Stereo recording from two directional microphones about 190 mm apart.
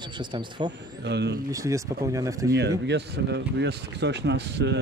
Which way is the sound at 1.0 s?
65° right (ahead or behind).